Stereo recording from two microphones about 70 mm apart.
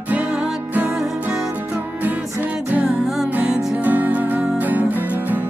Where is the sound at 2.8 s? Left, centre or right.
Centre.